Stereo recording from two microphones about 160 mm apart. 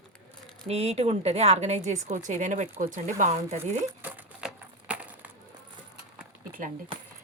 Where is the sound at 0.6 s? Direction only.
40° right (ahead or behind).